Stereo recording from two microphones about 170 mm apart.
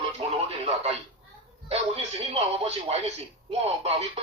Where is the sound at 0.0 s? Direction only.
40° right (ahead or behind).